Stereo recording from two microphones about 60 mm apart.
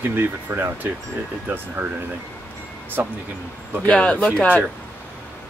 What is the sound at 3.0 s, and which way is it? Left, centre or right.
Speech, right.